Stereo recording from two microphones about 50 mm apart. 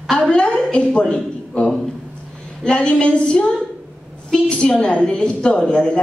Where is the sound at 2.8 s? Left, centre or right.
Centre.